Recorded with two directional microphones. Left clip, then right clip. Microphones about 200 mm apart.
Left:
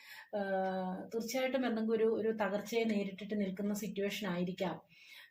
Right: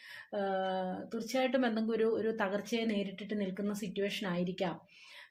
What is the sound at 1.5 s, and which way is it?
Speech, 40° right (ahead or behind).